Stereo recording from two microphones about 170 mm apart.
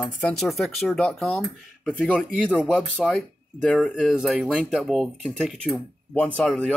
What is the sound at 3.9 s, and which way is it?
Speech, 5° right (ahead or behind).